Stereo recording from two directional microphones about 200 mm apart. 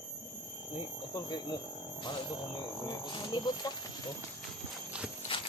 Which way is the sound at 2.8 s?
20° left (ahead or behind).